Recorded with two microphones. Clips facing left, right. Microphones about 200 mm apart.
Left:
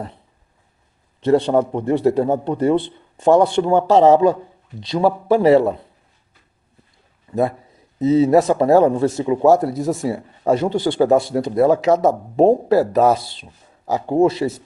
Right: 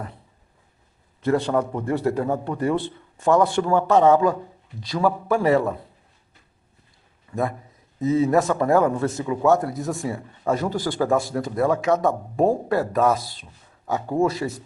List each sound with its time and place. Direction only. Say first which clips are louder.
1.2 s a man's voice: left 6 dB; 25° left (ahead or behind)
8.0 s a man's voice: left 5 dB; 25° left (ahead or behind)